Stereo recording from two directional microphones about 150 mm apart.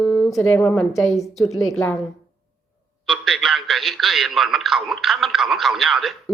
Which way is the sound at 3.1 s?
Centre (ahead or behind).